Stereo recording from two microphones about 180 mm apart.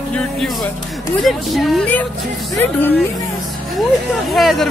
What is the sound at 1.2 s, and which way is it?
A man's voice, centre (ahead or behind).